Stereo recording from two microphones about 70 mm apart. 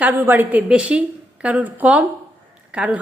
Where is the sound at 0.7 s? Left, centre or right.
Centre.